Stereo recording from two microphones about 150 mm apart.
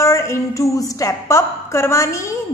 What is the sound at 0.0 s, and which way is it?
A woman's voice, 20° left (ahead or behind).